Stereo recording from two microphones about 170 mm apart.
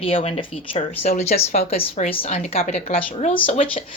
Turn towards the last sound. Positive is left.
turn(degrees=30)  # may be behind; listen again after turning